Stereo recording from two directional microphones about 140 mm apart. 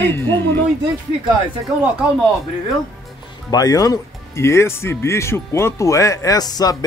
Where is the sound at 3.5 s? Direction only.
25° left (ahead or behind).